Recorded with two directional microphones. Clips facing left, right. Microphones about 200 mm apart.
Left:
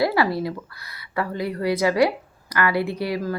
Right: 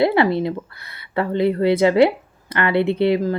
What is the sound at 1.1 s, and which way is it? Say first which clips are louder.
Speech: right 7 dB; 25° right (ahead or behind).